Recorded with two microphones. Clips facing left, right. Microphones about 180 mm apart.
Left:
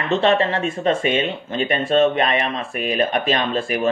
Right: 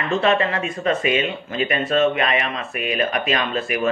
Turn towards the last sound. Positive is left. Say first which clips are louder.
# left 2 dB
turn(degrees=30)  # may be behind; listen again after turning